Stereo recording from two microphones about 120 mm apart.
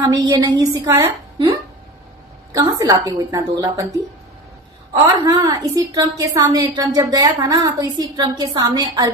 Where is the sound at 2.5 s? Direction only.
30° right (ahead or behind).